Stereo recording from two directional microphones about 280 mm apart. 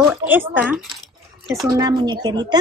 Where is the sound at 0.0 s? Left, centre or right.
Centre.